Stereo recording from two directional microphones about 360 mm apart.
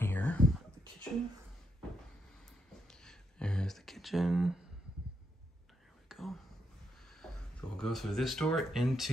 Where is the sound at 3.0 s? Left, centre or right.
Centre.